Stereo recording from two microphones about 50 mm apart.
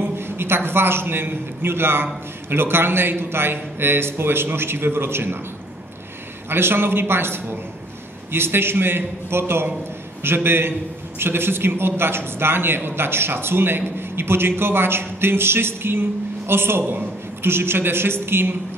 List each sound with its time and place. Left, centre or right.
0.0 s a man's voice: right
6.5 s a man's voice: right